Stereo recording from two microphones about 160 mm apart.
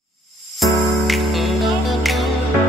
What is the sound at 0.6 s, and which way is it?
Music, centre (ahead or behind).